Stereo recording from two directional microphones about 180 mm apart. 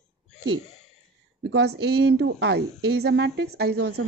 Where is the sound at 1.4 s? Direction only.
65° right (ahead or behind).